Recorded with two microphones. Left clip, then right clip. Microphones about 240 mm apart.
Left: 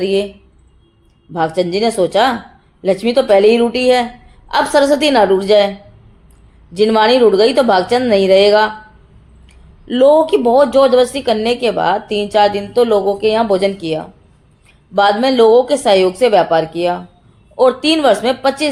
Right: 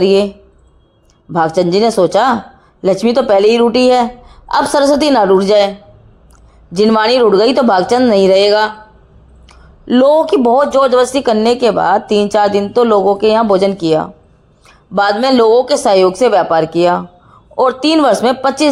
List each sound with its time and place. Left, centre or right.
0.0 s speech: right
1.3 s speech: right
6.7 s speech: right